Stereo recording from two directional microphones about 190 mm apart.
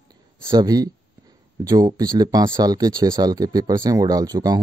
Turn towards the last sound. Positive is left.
turn(degrees=-20)  # may be behind; listen again after turning